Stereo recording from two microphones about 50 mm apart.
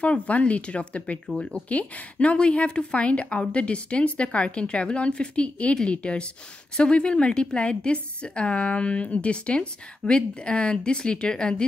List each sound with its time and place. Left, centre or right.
0.0 s a woman's voice: left